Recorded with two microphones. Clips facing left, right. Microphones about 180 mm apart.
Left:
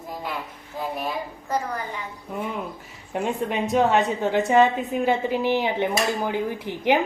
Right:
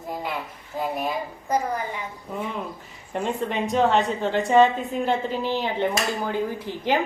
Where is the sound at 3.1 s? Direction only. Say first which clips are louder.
Left 1 dB; 10° left (ahead or behind).